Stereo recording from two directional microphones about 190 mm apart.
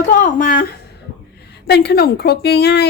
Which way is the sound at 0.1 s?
45° left (ahead or behind).